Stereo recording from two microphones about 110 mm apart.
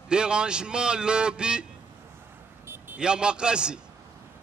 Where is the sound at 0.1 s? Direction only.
10° right (ahead or behind).